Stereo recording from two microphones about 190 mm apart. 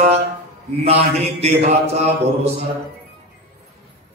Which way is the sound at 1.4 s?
35° right (ahead or behind).